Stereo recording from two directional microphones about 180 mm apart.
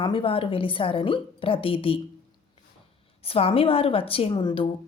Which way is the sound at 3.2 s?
30° left (ahead or behind).